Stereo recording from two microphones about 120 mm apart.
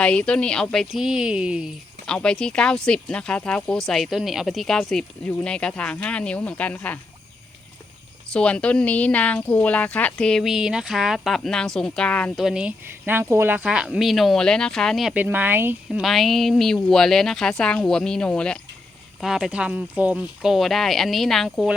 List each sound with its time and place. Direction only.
0.0 s speech: 10° left (ahead or behind); by 1.7 s 10° right (ahead or behind)
2.0 s speech: 5° left (ahead or behind)
8.3 s speech: 10° left (ahead or behind)
12.4 s speech: 5° right (ahead or behind)
15.1 s speech: 15° right (ahead or behind)
15.9 s speech: centre (ahead or behind)
19.2 s speech: 5° right (ahead or behind)